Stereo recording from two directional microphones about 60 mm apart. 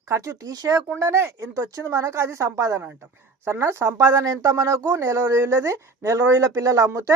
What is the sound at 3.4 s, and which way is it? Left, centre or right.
Speech, right.